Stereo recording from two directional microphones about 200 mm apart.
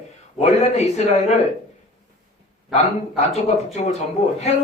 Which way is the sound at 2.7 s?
35° left (ahead or behind).